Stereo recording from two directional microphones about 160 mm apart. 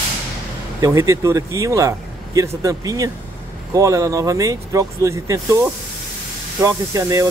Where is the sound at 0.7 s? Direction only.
20° right (ahead or behind).